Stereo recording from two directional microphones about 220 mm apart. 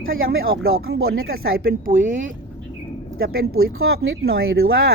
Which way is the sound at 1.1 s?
45° right (ahead or behind).